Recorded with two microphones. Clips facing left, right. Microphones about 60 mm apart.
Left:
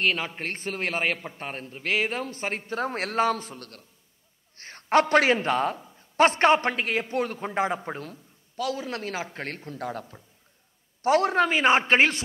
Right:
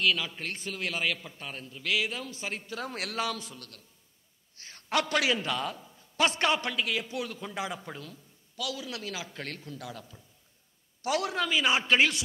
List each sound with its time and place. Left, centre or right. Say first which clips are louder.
0.0 s a man's voice: left 2 dB; left